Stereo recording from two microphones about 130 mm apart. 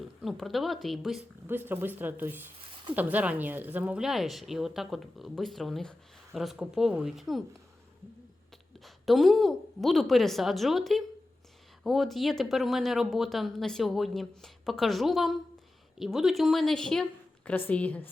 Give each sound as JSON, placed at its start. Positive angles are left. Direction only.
{"t": 0.2, "sound": "speech", "side_deg": 0}
{"t": 1.5, "sound": "speech", "side_deg": -15}
{"t": 8.8, "sound": "speech", "side_deg": 0}